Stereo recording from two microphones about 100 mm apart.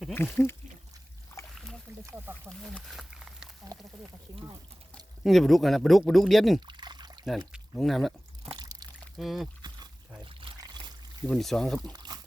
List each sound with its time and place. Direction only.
0.1 s speech: 20° left (ahead or behind)
2.0 s speech: 20° right (ahead or behind)
2.5 s speech: centre (ahead or behind)
2.9 s a sound: 5° right (ahead or behind)
3.7 s speech: 35° right (ahead or behind)
4.9 s speech: centre (ahead or behind)
6.7 s pour: 45° right (ahead or behind)
7.5 s speech: centre (ahead or behind)
8.5 s pour: 40° right (ahead or behind)
9.1 s speech: centre (ahead or behind)
9.6 s a sound: 45° right (ahead or behind)
10.6 s pour: 40° right (ahead or behind)
11.3 s speech: 5° left (ahead or behind)
11.9 s a sound: 45° right (ahead or behind)